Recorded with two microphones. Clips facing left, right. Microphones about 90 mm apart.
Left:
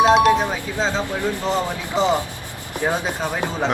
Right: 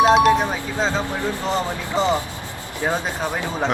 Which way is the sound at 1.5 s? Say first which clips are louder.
Left 1 dB; 20° left (ahead or behind).